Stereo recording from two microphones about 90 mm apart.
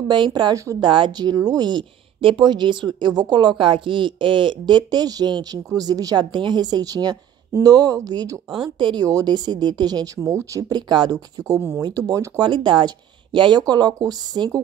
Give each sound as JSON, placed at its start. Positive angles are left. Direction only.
{"t": 0.1, "sound": "a woman's voice", "side_deg": -60}
{"t": 9.0, "sound": "speech", "side_deg": -45}
{"t": 10.1, "sound": "speech", "side_deg": -35}
{"t": 10.7, "sound": "speech", "side_deg": -55}
{"t": 12.4, "sound": "speech", "side_deg": -65}